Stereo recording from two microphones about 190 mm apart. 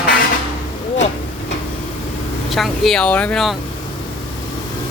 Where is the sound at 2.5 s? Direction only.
Centre (ahead or behind).